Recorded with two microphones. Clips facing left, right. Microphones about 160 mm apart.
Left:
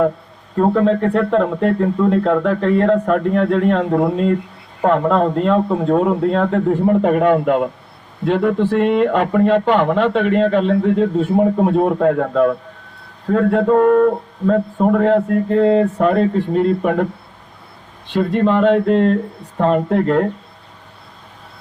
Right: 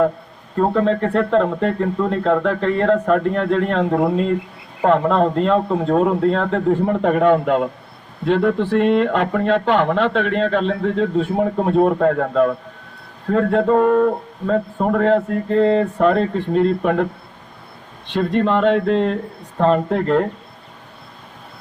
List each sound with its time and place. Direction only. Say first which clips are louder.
0.5 s a man's voice: left 2 dB; 5° left (ahead or behind)
18.1 s a man's voice: left 2 dB; 10° left (ahead or behind)